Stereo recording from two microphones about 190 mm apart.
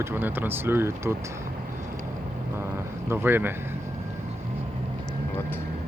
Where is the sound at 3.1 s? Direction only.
10° right (ahead or behind).